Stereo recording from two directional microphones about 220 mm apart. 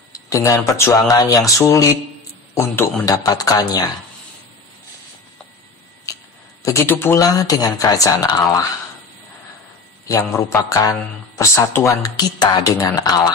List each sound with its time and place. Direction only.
0.1 s speech: 15° left (ahead or behind)
6.6 s speech: 10° left (ahead or behind)
10.0 s speech: 10° left (ahead or behind)